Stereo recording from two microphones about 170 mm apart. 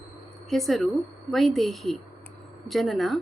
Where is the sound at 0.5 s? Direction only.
Centre (ahead or behind).